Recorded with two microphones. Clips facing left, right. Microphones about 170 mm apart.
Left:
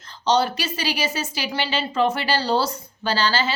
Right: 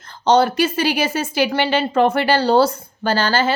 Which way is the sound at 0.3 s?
50° right (ahead or behind).